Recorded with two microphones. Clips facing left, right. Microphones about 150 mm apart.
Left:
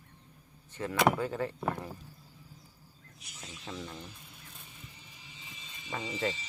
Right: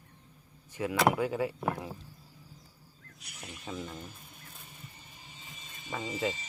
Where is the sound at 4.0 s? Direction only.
50° right (ahead or behind).